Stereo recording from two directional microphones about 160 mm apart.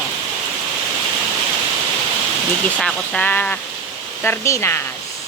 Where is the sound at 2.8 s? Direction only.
10° left (ahead or behind).